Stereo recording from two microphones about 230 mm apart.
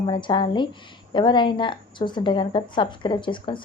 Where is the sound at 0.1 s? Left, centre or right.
Left.